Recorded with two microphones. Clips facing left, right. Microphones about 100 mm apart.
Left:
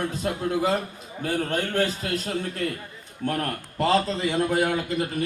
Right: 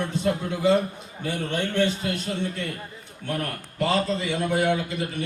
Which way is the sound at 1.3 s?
40° left (ahead or behind).